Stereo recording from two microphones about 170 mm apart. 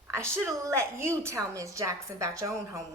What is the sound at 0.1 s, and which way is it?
A woman's voice, 15° right (ahead or behind).